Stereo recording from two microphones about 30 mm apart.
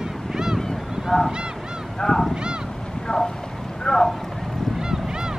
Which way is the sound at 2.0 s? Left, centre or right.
Centre.